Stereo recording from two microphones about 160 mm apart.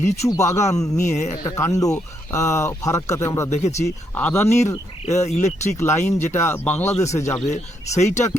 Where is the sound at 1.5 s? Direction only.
20° left (ahead or behind).